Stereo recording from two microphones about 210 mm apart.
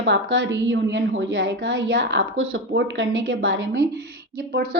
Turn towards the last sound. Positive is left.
turn(degrees=-60)  # may be behind; listen again after turning